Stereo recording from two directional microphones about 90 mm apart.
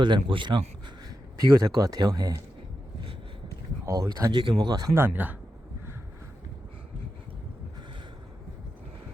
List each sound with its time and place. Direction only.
0.0 s speech: 65° right (ahead or behind)
1.5 s speech: 40° right (ahead or behind)
3.8 s speech: 35° right (ahead or behind)
4.3 s speech: 65° right (ahead or behind)
4.9 s speech: 20° right (ahead or behind)